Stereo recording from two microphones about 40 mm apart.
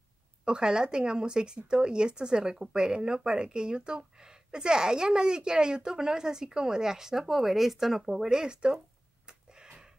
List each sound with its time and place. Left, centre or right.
0.5 s a woman's voice: right